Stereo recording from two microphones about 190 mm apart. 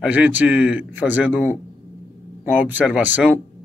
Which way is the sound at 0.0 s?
10° right (ahead or behind).